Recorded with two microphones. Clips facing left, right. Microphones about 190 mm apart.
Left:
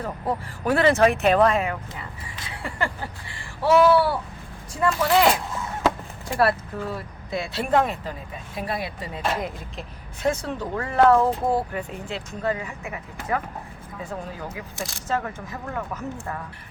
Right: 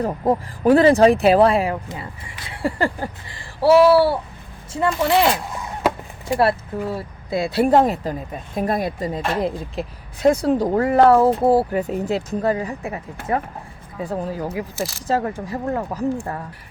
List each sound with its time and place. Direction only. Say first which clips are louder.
0.0 s speech: right 8 dB; 35° right (ahead or behind)
5.8 s a sound: right 2 dB; 20° right (ahead or behind)
7.6 s speech: right 6 dB; 35° right (ahead or behind)
14.8 s speech: right 7 dB; 5° right (ahead or behind)
15.0 s speech: right 5 dB; 35° right (ahead or behind)